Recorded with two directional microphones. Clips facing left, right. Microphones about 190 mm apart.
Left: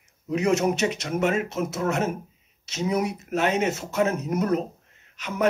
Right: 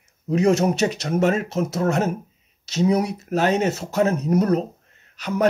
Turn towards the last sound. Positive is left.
turn(degrees=-35)  # may be behind; listen again after turning